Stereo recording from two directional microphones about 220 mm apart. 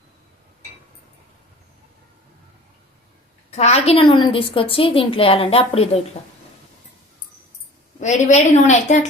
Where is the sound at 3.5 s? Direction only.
30° left (ahead or behind).